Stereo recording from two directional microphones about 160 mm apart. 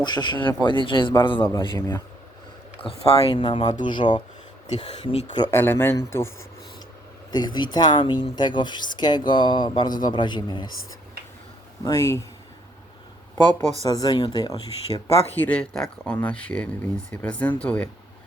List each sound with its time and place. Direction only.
0.0 s speech: 30° left (ahead or behind)
1.5 s speech: 15° left (ahead or behind)
3.1 s speech: 35° left (ahead or behind)
4.9 s speech: 40° left (ahead or behind)
5.3 s speech: 25° left (ahead or behind)
5.5 s speech: 15° left (ahead or behind)
7.3 s speech: 25° left (ahead or behind)
11.9 s speech: 20° left (ahead or behind)
13.8 s speech: 25° left (ahead or behind)
15.4 s speech: 10° left (ahead or behind)